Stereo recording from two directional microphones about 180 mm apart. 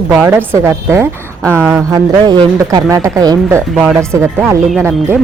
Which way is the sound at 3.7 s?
Centre (ahead or behind).